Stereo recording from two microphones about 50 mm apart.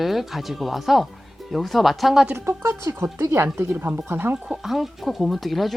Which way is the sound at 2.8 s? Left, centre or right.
Right.